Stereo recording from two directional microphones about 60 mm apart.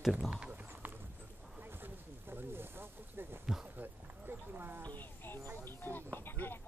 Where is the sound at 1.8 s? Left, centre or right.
Right.